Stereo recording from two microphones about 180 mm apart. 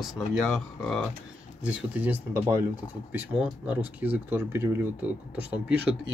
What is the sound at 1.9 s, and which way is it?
Speech, 10° right (ahead or behind).